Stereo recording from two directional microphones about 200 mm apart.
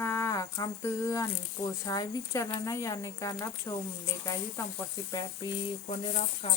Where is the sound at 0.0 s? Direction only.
10° left (ahead or behind).